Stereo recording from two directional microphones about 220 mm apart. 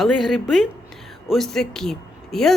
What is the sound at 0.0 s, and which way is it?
Speech, centre (ahead or behind).